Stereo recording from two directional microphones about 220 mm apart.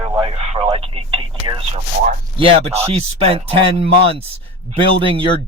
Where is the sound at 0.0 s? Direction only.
25° right (ahead or behind).